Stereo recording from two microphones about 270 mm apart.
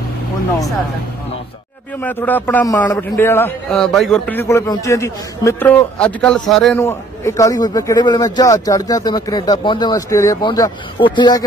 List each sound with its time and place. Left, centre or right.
2.0 s a man's voice: centre